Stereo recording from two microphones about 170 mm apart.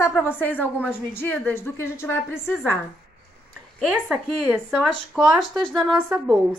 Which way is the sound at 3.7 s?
Centre (ahead or behind).